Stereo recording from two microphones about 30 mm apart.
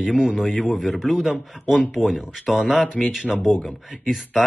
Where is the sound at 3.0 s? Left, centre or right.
Left.